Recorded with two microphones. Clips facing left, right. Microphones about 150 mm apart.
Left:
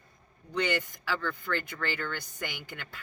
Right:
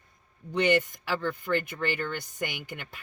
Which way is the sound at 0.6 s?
20° right (ahead or behind).